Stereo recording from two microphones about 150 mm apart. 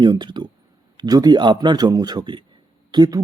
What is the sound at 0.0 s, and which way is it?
A man's voice, 30° right (ahead or behind).